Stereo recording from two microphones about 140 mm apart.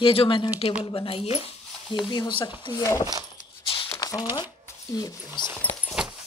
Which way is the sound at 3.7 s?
40° left (ahead or behind).